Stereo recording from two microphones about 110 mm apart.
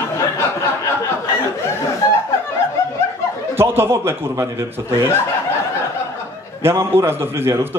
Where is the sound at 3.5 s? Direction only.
20° right (ahead or behind).